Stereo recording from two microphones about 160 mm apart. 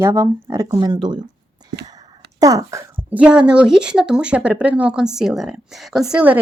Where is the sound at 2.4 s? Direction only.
20° right (ahead or behind).